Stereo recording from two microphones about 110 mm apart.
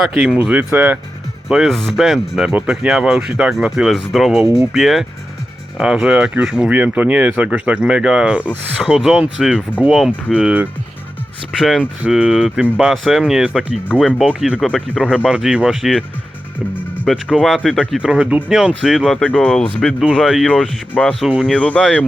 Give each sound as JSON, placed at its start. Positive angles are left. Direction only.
{"t": 0.3, "sound": "speech", "side_deg": -15}
{"t": 1.5, "sound": "speech", "side_deg": -5}
{"t": 17.3, "sound": "speech", "side_deg": 0}
{"t": 19.2, "sound": "speech", "side_deg": 10}
{"t": 19.9, "sound": "speech", "side_deg": -5}
{"t": 20.5, "sound": "speech", "side_deg": 10}